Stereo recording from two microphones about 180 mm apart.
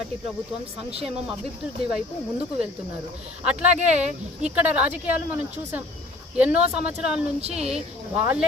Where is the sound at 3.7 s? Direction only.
40° right (ahead or behind).